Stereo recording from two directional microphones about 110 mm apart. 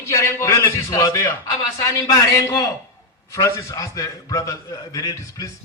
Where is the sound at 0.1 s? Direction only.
25° left (ahead or behind).